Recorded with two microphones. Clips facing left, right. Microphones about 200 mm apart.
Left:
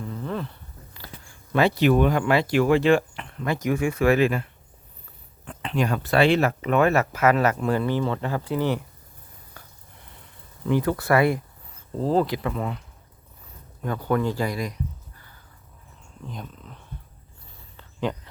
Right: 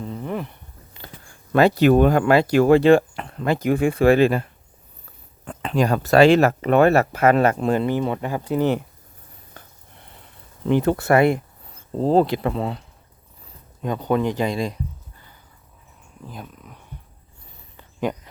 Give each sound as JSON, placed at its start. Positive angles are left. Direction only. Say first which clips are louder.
{"t": 0.0, "sound": "a sound", "louder": "right 2 dB", "side_deg": -20}
{"t": 1.5, "sound": "speech", "louder": "right 4 dB", "side_deg": -40}
{"t": 5.5, "sound": "speech", "louder": "right 5 dB", "side_deg": -40}
{"t": 10.8, "sound": "speech", "louder": "right 4 dB", "side_deg": -25}
{"t": 13.8, "sound": "speech", "louder": "right 3 dB", "side_deg": -20}
{"t": 16.2, "sound": "speech", "louder": "even", "side_deg": -5}
{"t": 17.7, "sound": "cricket", "louder": "right 3 dB", "side_deg": -10}